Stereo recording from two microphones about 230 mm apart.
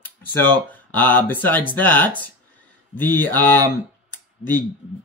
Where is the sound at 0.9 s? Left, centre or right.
Centre.